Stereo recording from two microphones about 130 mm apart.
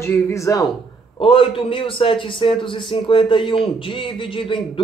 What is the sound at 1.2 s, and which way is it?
A man's voice, 45° left (ahead or behind).